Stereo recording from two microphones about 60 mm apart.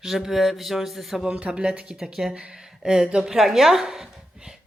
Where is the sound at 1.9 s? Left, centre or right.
Centre.